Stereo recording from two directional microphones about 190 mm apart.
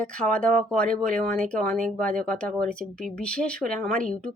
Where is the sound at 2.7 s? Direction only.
5° left (ahead or behind).